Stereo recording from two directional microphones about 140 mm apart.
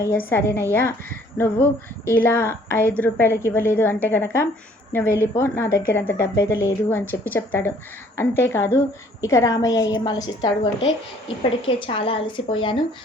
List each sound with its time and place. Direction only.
0.0 s a woman's voice: 15° left (ahead or behind)
2.0 s a woman's voice: 15° left (ahead or behind); by 12.7 s 35° left (ahead or behind)